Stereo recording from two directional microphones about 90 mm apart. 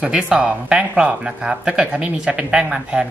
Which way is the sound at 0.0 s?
10° right (ahead or behind).